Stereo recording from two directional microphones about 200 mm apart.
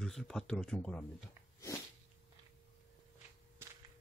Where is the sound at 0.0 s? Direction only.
5° left (ahead or behind).